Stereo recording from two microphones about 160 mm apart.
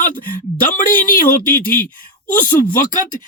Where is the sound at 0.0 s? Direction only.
55° left (ahead or behind).